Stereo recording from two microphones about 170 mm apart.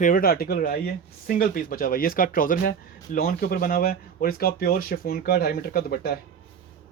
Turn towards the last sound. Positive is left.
turn(degrees=65)  # may be behind; listen again after turning